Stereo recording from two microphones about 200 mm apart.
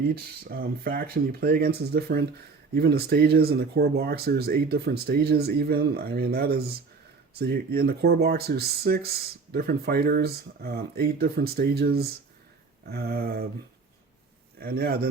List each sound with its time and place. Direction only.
0.1 s speech: 50° right (ahead or behind)
14.6 s speech: 50° right (ahead or behind)